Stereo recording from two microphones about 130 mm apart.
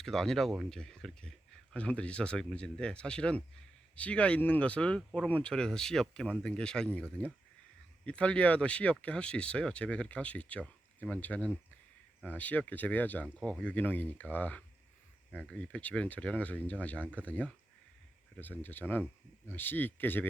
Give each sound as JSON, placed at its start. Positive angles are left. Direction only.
{"t": 0.0, "sound": "speech", "side_deg": 5}
{"t": 8.0, "sound": "speech", "side_deg": 10}